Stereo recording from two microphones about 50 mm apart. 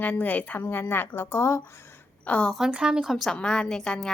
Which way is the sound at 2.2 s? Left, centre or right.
Left.